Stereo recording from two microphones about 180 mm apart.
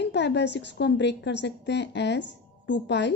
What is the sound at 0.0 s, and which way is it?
A woman's voice, 70° left (ahead or behind).